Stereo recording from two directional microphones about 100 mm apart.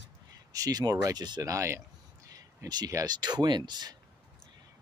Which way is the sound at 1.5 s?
30° right (ahead or behind).